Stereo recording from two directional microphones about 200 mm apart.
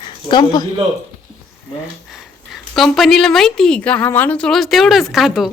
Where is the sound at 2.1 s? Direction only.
Centre (ahead or behind).